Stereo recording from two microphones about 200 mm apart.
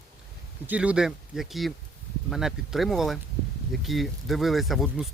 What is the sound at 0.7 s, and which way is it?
Speech, 5° right (ahead or behind).